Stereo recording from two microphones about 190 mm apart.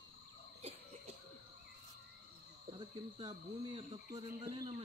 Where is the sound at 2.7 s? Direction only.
25° right (ahead or behind).